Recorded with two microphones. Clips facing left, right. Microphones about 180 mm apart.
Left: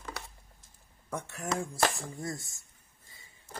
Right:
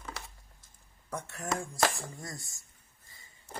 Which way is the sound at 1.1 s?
10° left (ahead or behind).